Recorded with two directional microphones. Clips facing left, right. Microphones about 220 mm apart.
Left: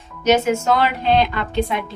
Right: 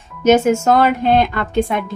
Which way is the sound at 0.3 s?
50° right (ahead or behind).